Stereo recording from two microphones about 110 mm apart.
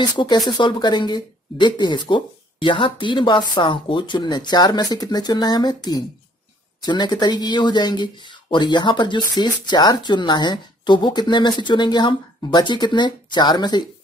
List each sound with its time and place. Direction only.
0.0 s speech: 40° left (ahead or behind)